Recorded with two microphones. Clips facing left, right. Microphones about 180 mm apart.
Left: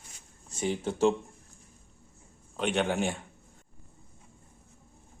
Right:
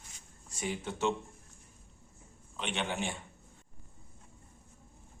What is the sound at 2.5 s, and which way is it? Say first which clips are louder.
Speech: left 8 dB; 45° left (ahead or behind).